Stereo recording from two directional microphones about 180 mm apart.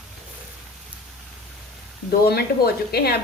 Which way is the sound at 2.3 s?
60° left (ahead or behind).